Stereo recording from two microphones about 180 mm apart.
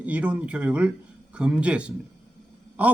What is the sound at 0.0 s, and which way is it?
A man's voice, 5° right (ahead or behind).